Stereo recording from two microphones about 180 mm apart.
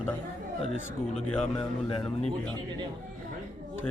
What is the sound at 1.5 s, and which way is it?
Speech, 30° left (ahead or behind).